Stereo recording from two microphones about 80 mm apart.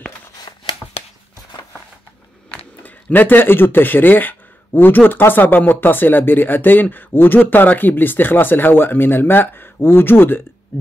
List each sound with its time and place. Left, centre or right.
2.5 s speech: left